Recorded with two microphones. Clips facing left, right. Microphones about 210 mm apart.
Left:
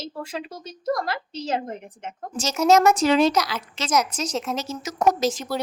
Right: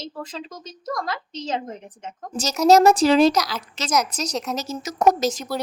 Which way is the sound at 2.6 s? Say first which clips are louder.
Right 3 dB; 35° right (ahead or behind).